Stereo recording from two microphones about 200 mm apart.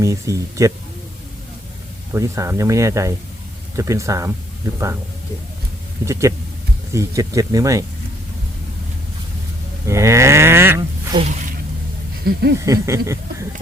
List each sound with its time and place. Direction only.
0.0 s speech: 15° right (ahead or behind)
2.1 s speech: 15° right (ahead or behind)
6.1 s speech: 15° right (ahead or behind)
9.8 s livestock: 15° right (ahead or behind)
11.1 s speech: 30° right (ahead or behind)
12.2 s a sound: 50° right (ahead or behind)
12.6 s speech: 15° right (ahead or behind)